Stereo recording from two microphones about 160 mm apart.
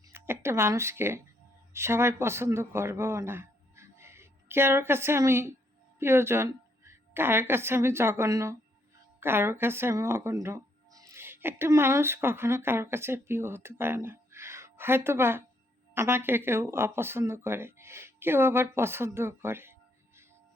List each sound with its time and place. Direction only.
0.0 s a woman's voice: 15° right (ahead or behind)